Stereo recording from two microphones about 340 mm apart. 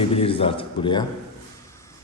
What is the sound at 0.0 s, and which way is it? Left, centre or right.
Speech, centre.